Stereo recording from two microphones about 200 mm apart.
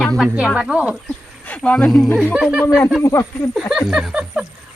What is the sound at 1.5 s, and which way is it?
Speech, 5° left (ahead or behind).